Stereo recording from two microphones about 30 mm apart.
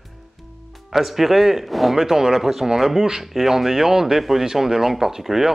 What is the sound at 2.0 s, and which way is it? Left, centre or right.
Speech, centre.